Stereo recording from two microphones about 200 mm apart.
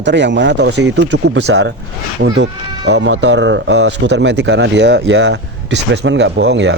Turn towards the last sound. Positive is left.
turn(degrees=-60)  # may be behind; listen again after turning